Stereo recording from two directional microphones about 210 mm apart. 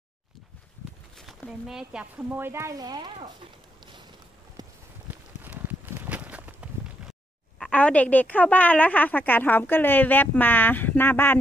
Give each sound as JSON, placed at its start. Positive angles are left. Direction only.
{"t": 1.1, "sound": "speech", "side_deg": 0}
{"t": 4.6, "sound": "clip-clop", "side_deg": -20}
{"t": 5.4, "sound": "a sound", "side_deg": -10}
{"t": 7.5, "sound": "a woman's voice", "side_deg": 5}